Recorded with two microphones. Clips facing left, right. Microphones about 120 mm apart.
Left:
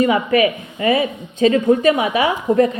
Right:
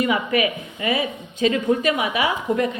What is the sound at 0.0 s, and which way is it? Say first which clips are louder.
A woman's voice: left 6 dB; 40° left (ahead or behind).